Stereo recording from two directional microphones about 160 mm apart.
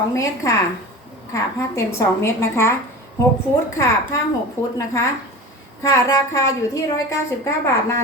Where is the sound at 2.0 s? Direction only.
15° left (ahead or behind).